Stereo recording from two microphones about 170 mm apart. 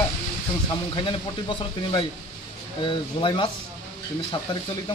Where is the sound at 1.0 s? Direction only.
30° left (ahead or behind).